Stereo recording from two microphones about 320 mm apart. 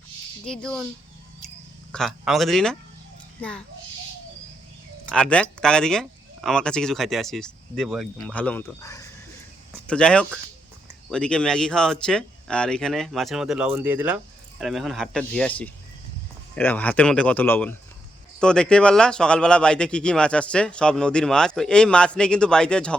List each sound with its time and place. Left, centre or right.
0.4 s speech: centre
1.9 s speech: centre
5.0 s speech: centre